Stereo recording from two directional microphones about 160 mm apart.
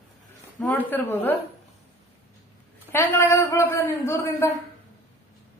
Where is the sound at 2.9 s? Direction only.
15° left (ahead or behind).